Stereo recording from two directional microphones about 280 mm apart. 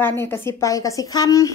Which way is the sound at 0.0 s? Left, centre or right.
Centre.